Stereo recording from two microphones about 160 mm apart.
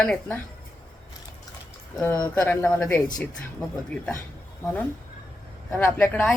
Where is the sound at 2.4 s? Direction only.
5° left (ahead or behind).